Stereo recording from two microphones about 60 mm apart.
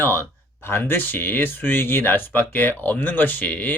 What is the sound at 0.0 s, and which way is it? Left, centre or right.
Speech, left.